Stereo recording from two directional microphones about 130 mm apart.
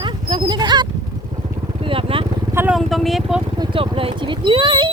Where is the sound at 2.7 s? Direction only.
Centre (ahead or behind).